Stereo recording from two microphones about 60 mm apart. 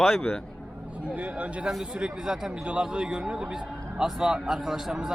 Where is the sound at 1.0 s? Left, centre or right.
Right.